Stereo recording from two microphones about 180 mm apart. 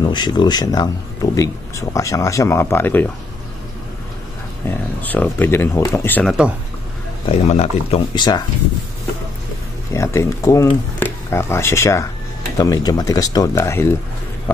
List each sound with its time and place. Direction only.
0.1 s a man's voice: 25° left (ahead or behind)
4.6 s a man's voice: 10° left (ahead or behind)
7.2 s speech: 35° left (ahead or behind)
8.1 s speech: 25° left (ahead or behind)
9.9 s a man's voice: 15° left (ahead or behind)